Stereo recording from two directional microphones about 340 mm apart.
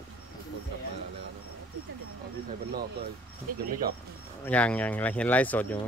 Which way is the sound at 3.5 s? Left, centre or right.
Right.